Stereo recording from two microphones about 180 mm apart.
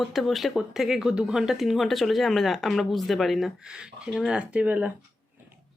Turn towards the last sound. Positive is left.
turn(degrees=-10)  # may be behind; listen again after turning